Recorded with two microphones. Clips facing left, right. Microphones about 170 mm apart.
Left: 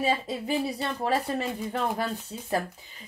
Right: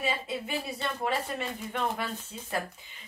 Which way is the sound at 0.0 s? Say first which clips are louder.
Left 5 dB; 35° left (ahead or behind).